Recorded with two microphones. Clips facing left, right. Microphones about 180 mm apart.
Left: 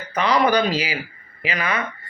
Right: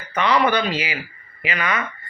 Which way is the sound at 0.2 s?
40° left (ahead or behind).